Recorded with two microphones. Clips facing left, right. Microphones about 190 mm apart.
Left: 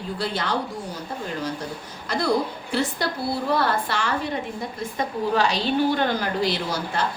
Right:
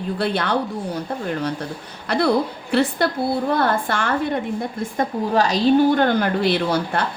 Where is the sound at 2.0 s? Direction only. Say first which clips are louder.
Right 4 dB; 65° right (ahead or behind).